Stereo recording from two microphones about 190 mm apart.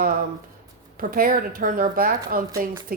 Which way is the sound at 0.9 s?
50° right (ahead or behind).